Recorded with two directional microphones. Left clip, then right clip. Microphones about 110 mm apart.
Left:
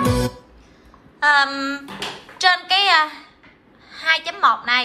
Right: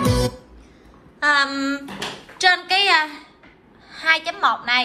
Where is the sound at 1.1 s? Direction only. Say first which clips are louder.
Left 2 dB; 15° left (ahead or behind).